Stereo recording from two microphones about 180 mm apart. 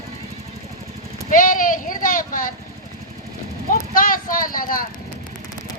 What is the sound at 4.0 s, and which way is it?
Speech, 50° left (ahead or behind).